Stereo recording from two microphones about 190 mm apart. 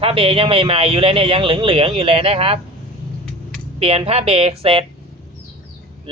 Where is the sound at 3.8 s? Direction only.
30° right (ahead or behind).